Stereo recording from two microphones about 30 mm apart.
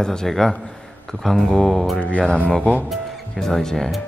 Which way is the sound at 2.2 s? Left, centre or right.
Left.